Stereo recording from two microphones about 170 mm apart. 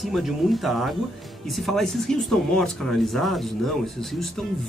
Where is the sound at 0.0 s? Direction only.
Centre (ahead or behind).